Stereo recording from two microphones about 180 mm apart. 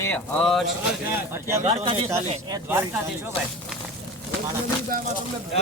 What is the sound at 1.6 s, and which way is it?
Speech, 30° right (ahead or behind).